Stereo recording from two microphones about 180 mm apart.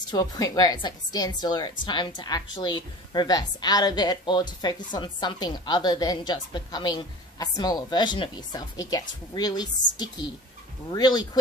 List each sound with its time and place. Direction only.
0.1 s a woman's voice: 20° left (ahead or behind)